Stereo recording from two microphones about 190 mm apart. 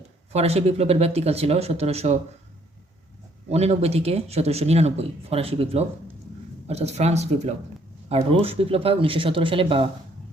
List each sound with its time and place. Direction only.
0.3 s speech: 35° right (ahead or behind)
3.5 s speech: 35° right (ahead or behind)